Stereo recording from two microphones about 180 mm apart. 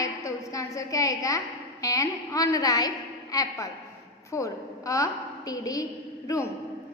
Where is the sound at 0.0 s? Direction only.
20° left (ahead or behind).